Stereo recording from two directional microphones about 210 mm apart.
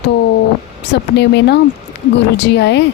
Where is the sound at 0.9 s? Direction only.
55° left (ahead or behind).